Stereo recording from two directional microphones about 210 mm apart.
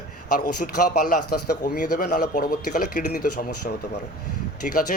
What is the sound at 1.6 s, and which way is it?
Speech, 40° left (ahead or behind).